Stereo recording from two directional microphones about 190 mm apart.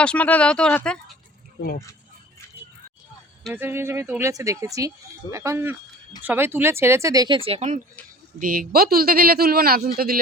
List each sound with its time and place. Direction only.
0.0 s speech: 5° left (ahead or behind)
3.5 s speech: 10° right (ahead or behind); by 7.8 s 35° right (ahead or behind)
8.4 s a man's voice: 45° right (ahead or behind)